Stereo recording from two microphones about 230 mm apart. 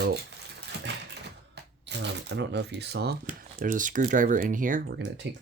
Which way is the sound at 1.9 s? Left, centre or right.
Right.